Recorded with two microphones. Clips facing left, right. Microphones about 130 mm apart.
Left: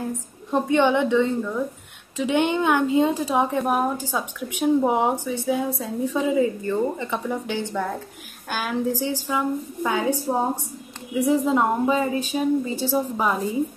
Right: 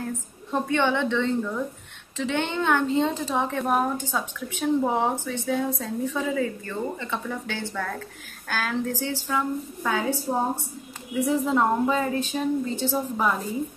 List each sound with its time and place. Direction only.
0.0 s a woman's voice: 15° left (ahead or behind)
10.3 s a woman's voice: 30° left (ahead or behind)
11.1 s a woman's voice: 15° left (ahead or behind)